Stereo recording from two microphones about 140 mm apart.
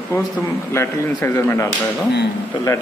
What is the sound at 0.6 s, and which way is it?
Speech, 20° left (ahead or behind).